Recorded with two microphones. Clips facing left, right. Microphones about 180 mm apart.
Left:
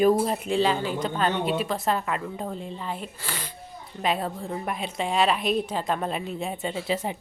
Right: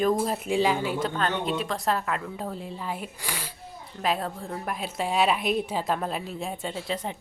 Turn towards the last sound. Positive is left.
turn(degrees=5)  # may be behind; listen again after turning